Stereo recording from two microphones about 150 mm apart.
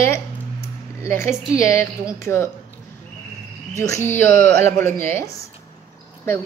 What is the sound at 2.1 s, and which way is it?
Female singing, 15° left (ahead or behind).